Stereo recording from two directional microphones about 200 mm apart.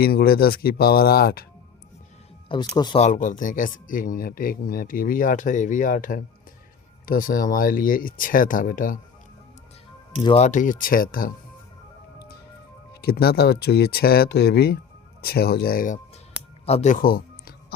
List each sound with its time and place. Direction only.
0.0 s speech: 50° left (ahead or behind)
2.5 s speech: 20° left (ahead or behind)
3.0 s speech: 40° left (ahead or behind)
10.2 s speech: 35° left (ahead or behind)
12.9 s speech: 50° left (ahead or behind)
16.6 s a sound: 35° left (ahead or behind)